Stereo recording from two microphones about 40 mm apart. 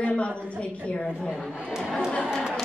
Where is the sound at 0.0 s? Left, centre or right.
Left.